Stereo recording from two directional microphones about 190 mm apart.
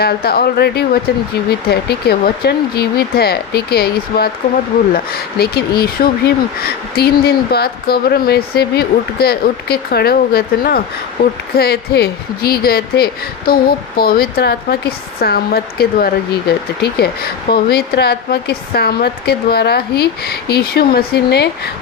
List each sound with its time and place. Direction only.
0.0 s speech: 55° left (ahead or behind)